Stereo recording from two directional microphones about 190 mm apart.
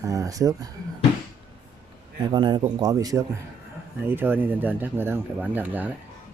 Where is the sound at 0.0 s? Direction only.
15° right (ahead or behind).